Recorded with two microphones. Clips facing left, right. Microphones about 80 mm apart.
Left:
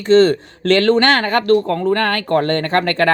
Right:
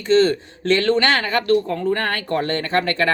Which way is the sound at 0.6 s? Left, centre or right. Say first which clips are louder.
Left 4 dB; left.